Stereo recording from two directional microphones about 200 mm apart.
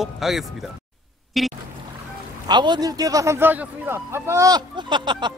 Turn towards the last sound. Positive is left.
turn(degrees=-25)  # may be behind; listen again after turning